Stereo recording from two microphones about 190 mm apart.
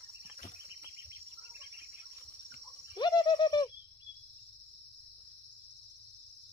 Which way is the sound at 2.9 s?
20° left (ahead or behind).